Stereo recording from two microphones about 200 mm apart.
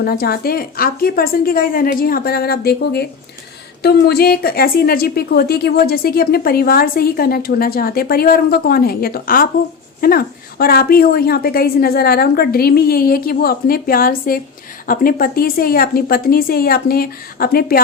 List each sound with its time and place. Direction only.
0.0 s a woman's voice: 50° left (ahead or behind)